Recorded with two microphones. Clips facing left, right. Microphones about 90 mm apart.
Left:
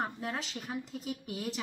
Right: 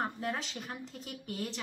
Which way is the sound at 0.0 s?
Centre (ahead or behind).